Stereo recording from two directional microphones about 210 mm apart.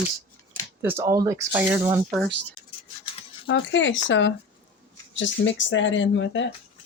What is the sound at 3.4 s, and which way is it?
Speech, 65° left (ahead or behind).